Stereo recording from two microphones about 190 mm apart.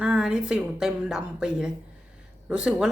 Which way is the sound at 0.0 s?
5° right (ahead or behind).